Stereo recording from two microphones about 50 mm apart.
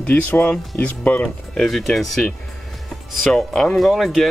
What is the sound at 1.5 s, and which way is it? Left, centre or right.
Speech, centre.